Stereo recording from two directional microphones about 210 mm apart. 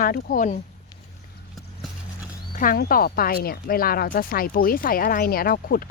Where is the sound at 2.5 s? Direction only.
40° left (ahead or behind).